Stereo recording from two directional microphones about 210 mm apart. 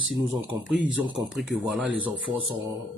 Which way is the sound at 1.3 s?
Centre (ahead or behind).